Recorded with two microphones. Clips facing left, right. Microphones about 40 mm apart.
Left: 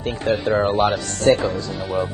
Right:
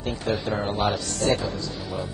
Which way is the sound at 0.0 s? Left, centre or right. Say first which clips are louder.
Left 6 dB; left.